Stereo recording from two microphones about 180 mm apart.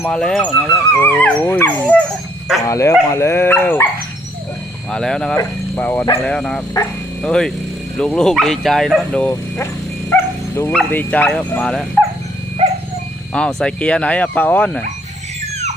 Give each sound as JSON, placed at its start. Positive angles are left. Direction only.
{"t": 0.0, "sound": "speech", "side_deg": 5}
{"t": 4.9, "sound": "speech", "side_deg": 5}
{"t": 10.1, "sound": "dog", "side_deg": 15}
{"t": 10.7, "sound": "speech", "side_deg": 5}
{"t": 13.3, "sound": "speech", "side_deg": 5}